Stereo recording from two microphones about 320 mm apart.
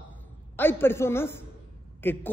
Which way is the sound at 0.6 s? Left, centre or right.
Centre.